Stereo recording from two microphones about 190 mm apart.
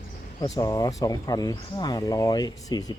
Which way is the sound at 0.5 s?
20° left (ahead or behind).